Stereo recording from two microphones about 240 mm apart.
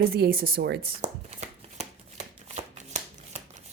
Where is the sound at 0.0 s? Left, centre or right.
Right.